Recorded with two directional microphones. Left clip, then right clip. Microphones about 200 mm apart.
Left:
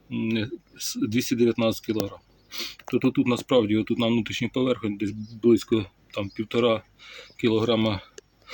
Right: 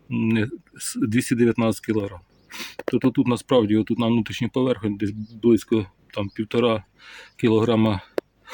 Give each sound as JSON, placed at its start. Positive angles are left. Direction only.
{"t": 0.1, "sound": "speech", "side_deg": -40}